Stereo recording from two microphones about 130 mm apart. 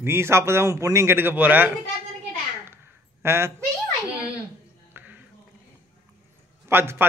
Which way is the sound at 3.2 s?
20° right (ahead or behind).